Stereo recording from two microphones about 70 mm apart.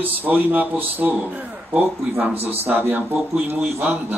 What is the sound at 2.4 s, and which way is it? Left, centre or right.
Speech, right.